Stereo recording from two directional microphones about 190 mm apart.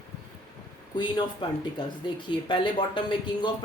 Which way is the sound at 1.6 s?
25° left (ahead or behind).